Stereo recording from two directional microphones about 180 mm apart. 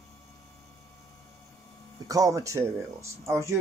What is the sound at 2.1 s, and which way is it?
Speech, 20° right (ahead or behind).